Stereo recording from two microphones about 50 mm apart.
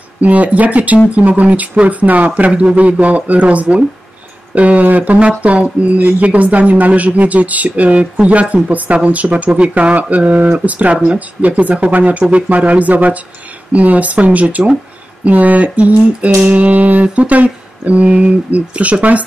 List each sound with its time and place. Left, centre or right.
0.2 s speech: right